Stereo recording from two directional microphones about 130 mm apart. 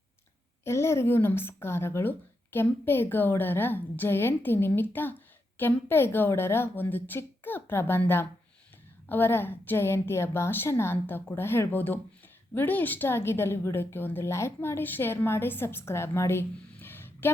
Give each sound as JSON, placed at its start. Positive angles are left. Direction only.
{"t": 0.6, "sound": "a woman's voice", "side_deg": 20}